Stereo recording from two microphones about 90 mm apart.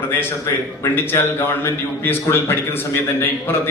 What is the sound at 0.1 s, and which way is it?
A man's voice, 25° left (ahead or behind).